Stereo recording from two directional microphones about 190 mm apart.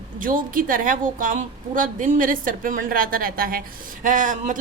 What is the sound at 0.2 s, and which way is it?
Speech, 45° right (ahead or behind).